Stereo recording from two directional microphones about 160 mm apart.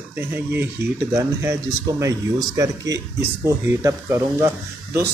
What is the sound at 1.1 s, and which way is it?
Speech, 15° right (ahead or behind).